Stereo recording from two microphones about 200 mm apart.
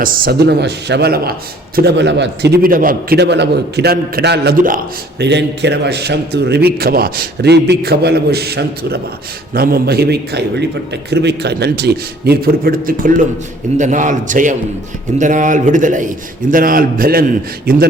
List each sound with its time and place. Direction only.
0.0 s a man's voice: 50° right (ahead or behind)
5.2 s a man's voice: 60° right (ahead or behind)